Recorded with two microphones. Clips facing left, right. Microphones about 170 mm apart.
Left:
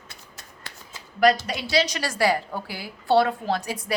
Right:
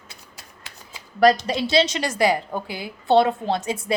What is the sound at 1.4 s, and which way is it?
A woman's voice, 25° right (ahead or behind).